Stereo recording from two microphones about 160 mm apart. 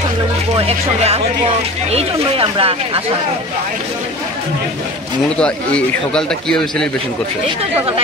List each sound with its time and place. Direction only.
0.6 s speech: 40° right (ahead or behind)
5.4 s a man's voice: 5° left (ahead or behind)